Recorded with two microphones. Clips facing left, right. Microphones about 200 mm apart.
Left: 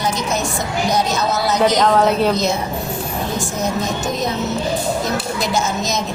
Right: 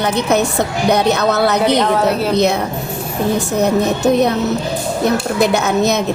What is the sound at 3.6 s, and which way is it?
A woman's voice, 65° right (ahead or behind).